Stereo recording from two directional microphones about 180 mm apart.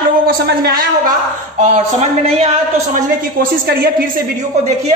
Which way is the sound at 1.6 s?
40° right (ahead or behind).